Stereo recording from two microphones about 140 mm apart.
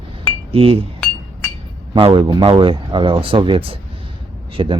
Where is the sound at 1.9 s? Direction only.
40° right (ahead or behind).